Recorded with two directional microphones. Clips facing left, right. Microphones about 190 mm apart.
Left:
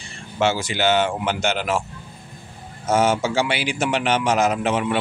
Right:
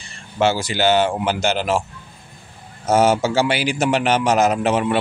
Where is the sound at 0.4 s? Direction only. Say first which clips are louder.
Right 2 dB; 35° right (ahead or behind).